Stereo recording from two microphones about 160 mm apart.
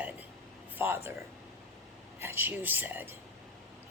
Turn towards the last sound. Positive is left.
turn(degrees=-10)  # may be behind; listen again after turning